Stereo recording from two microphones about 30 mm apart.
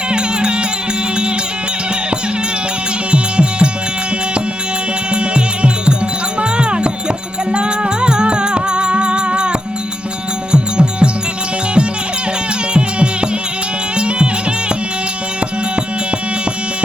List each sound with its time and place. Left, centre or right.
0.1 s music: right
3.1 s music: right
5.1 s music: right
12.7 s music: right